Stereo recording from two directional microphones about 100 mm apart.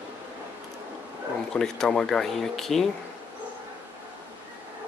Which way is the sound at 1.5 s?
5° left (ahead or behind).